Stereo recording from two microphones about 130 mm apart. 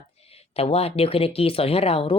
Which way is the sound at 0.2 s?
50° left (ahead or behind).